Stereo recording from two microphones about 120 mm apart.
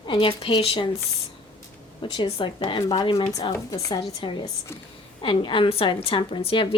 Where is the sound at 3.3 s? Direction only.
35° left (ahead or behind).